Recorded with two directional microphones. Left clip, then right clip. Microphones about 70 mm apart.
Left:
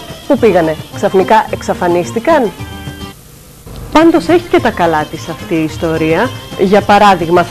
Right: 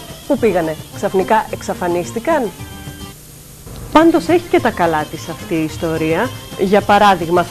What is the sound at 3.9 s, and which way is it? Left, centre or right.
A woman's voice, right.